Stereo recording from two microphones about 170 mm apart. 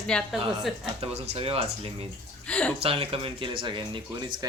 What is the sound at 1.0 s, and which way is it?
Speech, 35° right (ahead or behind).